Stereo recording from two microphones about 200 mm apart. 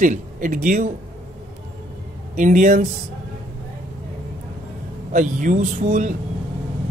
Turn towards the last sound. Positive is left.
turn(degrees=-40)  # may be behind; listen again after turning